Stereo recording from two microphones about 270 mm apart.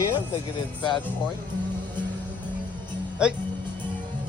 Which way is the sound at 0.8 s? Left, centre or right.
Centre.